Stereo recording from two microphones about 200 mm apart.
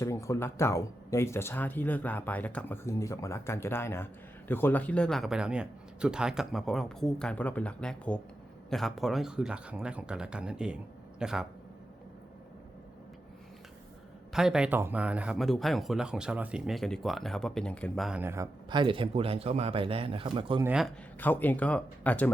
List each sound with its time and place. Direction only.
0.0 s speech: 15° left (ahead or behind); by 11.4 s 5° right (ahead or behind)
14.3 s speech: 5° right (ahead or behind)
18.7 s speech: 25° right (ahead or behind)
20.7 s speech: 5° right (ahead or behind)
21.2 s speech: 10° left (ahead or behind)